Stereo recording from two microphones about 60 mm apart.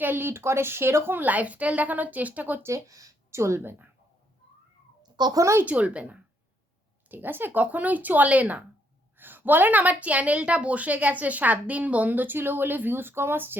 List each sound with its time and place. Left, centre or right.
0.0 s a woman's voice: right
2.6 s speech: right
3.3 s a woman's voice: right
3.6 s a woman's voice: right
5.3 s speech: right
5.6 s a woman's voice: right
7.1 s a woman's voice: right